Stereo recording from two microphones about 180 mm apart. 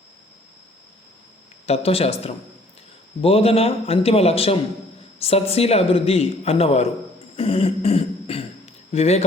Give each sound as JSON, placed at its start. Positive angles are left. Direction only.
{"t": 1.6, "sound": "a man's voice", "side_deg": 35}
{"t": 7.3, "sound": "throat clearing", "side_deg": 30}